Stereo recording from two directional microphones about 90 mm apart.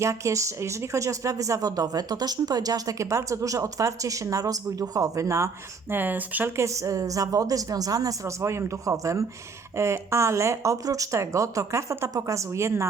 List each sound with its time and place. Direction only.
0.0 s speech: 35° right (ahead or behind)
5.9 s speech: 20° right (ahead or behind)
6.6 s speech: 35° right (ahead or behind)